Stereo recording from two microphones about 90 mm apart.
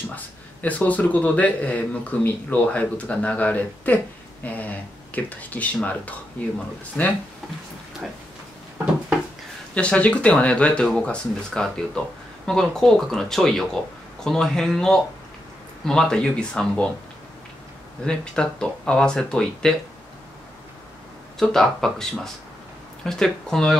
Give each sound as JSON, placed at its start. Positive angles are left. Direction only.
{"t": 0.1, "sound": "a man's voice", "side_deg": 15}
{"t": 7.0, "sound": "a man's voice", "side_deg": 15}
{"t": 8.0, "sound": "speech", "side_deg": -5}
{"t": 9.8, "sound": "a man's voice", "side_deg": 15}
{"t": 18.0, "sound": "a man's voice", "side_deg": 10}
{"t": 21.4, "sound": "speech", "side_deg": 5}